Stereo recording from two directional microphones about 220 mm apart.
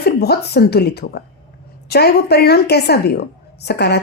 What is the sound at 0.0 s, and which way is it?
A woman's voice, 45° left (ahead or behind).